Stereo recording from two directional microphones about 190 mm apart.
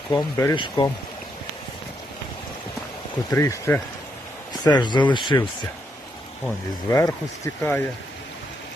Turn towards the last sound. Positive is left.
turn(degrees=15)  # may be behind; listen again after turning